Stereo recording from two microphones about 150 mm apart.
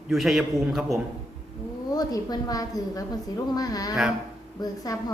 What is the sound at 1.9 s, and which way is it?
A woman's voice, 25° left (ahead or behind).